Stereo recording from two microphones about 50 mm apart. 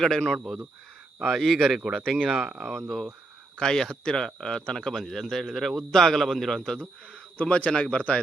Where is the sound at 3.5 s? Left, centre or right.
Centre.